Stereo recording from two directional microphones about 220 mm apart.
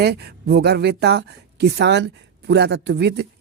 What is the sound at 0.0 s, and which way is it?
Speech, 50° right (ahead or behind).